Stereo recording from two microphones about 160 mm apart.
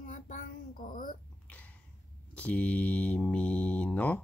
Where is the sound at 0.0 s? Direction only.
55° left (ahead or behind).